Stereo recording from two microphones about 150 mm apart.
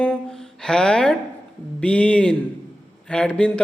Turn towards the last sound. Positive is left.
turn(degrees=5)  # may be behind; listen again after turning